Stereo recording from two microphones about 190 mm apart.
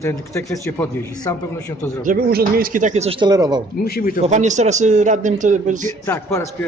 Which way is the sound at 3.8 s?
50° left (ahead or behind).